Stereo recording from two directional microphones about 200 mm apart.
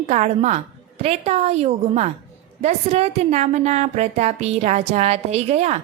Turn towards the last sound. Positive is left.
turn(degrees=-35)  # may be behind; listen again after turning